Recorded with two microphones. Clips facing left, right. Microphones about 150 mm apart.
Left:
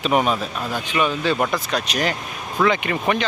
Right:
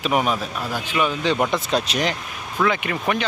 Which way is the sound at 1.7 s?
30° right (ahead or behind).